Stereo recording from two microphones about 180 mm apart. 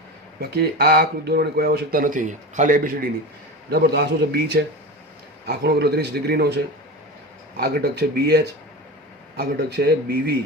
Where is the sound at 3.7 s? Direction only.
65° right (ahead or behind).